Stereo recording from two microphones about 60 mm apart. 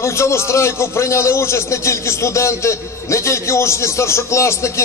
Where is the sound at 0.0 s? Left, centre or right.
Left.